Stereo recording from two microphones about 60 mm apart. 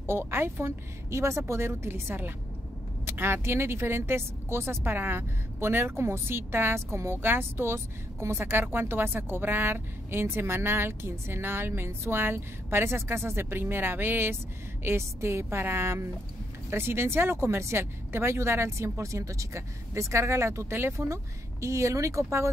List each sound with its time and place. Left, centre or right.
0.0 s speech: right